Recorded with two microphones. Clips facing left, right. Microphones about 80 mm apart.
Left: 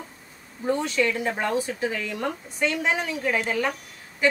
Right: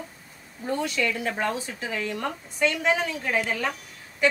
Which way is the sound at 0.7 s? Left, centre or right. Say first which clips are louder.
Left 3 dB; left.